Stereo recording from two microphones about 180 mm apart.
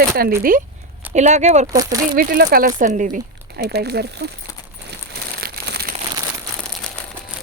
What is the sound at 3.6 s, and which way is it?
Speech, 65° right (ahead or behind).